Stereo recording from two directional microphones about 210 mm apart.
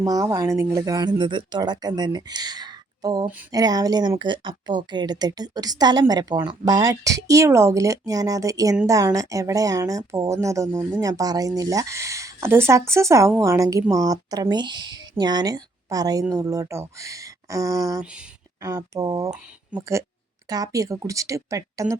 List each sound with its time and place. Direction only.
0.0 s speech: 15° right (ahead or behind)
18.0 s speech: 5° right (ahead or behind)